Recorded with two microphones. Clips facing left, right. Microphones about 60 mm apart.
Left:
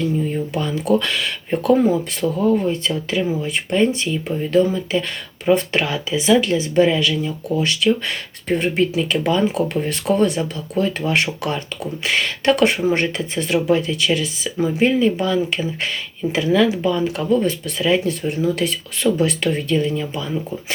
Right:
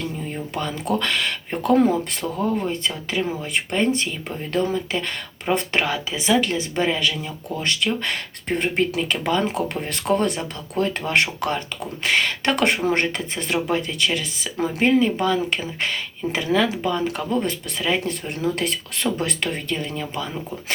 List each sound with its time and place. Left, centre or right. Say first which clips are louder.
0.5 s speech: left 5 dB; right